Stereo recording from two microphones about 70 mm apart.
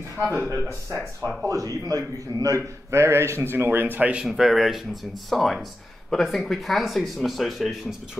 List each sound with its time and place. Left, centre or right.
0.3 s a man's voice: right
1.5 s a man's voice: right
4.2 s speech: centre